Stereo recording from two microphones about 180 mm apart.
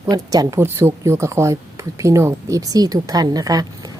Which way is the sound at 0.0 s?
20° right (ahead or behind).